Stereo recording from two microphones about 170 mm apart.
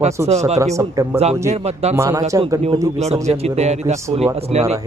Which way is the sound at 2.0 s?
20° right (ahead or behind).